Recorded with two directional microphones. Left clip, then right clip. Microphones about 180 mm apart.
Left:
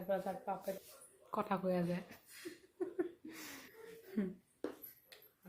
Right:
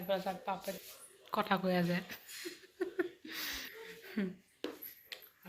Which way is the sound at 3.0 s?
5° left (ahead or behind).